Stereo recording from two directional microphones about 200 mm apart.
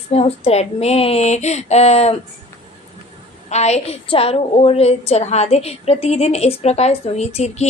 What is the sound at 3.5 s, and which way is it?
A woman's voice, 35° left (ahead or behind).